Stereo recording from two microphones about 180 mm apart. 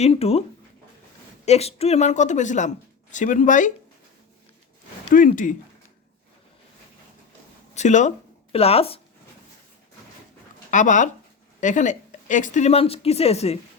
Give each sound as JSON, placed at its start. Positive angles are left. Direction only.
{"t": 0.0, "sound": "a woman's voice", "side_deg": 35}
{"t": 1.5, "sound": "speech", "side_deg": 35}
{"t": 5.1, "sound": "speech", "side_deg": 45}
{"t": 7.8, "sound": "a woman's voice", "side_deg": 40}
{"t": 10.7, "sound": "a woman's voice", "side_deg": 45}